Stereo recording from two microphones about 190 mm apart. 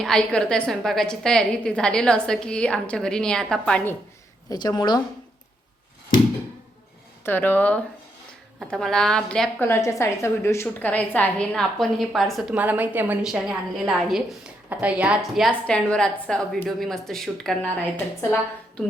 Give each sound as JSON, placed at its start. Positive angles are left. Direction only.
{"t": 0.0, "sound": "a woman's voice", "side_deg": 5}
{"t": 4.4, "sound": "a woman's voice", "side_deg": 20}
{"t": 7.3, "sound": "a woman's voice", "side_deg": 10}